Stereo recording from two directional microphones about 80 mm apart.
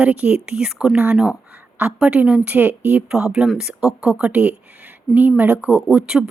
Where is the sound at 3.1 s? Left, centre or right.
Centre.